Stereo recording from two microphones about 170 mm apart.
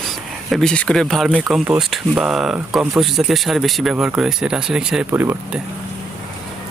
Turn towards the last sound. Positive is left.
turn(degrees=-15)  # may be behind; listen again after turning